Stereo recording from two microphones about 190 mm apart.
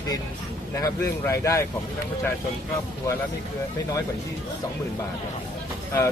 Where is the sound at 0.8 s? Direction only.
15° left (ahead or behind).